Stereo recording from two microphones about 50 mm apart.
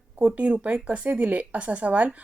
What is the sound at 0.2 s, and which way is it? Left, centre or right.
Speech, right.